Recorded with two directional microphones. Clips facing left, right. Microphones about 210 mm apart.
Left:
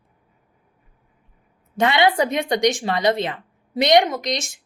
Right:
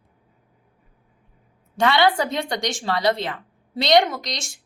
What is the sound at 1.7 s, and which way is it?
A woman's voice, 20° left (ahead or behind).